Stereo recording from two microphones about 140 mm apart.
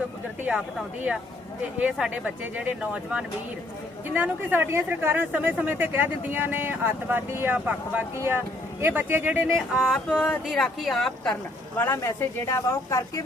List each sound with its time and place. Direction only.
0.4 s speech: 10° right (ahead or behind)
9.6 s music: centre (ahead or behind)
10.4 s speech: centre (ahead or behind)
11.8 s speech: 15° left (ahead or behind)